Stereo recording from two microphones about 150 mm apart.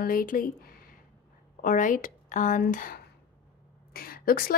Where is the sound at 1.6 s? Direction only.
60° left (ahead or behind).